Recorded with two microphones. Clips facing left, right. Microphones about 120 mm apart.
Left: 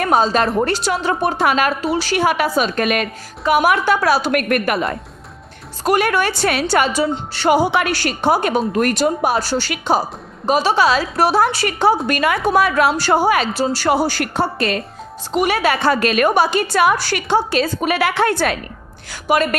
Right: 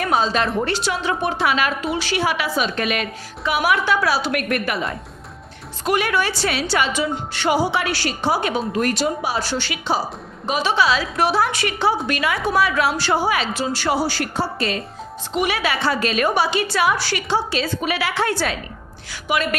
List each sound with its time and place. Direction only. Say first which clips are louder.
0.0 s a woman's voice: left 4 dB; 45° left (ahead or behind)
7.5 s a woman's voice: left 5 dB; 55° left (ahead or behind)
9.5 s a woman's voice: left 4 dB; 40° left (ahead or behind)
9.7 s a woman's voice: left 5 dB; 50° left (ahead or behind)
10.4 s a woman's voice: left 4 dB; 40° left (ahead or behind)
13.9 s speech: left 4 dB; 55° left (ahead or behind)
15.3 s a woman's voice: left 5 dB; 45° left (ahead or behind)
19.3 s a woman's voice: left 5 dB; 45° left (ahead or behind)